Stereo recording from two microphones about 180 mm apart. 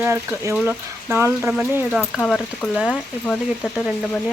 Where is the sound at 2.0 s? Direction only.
5° left (ahead or behind).